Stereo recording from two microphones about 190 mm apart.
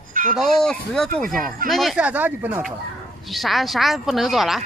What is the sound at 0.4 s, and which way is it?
Speech, centre (ahead or behind).